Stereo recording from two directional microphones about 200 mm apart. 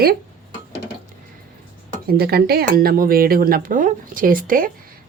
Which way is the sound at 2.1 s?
50° right (ahead or behind).